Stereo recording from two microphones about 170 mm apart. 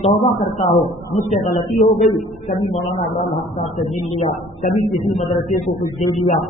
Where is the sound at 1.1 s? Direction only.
45° left (ahead or behind).